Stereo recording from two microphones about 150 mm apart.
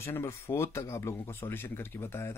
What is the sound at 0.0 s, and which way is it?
Speech, 15° left (ahead or behind).